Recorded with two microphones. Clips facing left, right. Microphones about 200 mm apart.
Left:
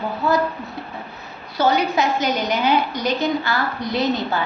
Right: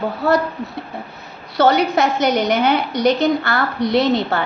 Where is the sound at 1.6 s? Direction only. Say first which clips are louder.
Right 4 dB; 70° right (ahead or behind).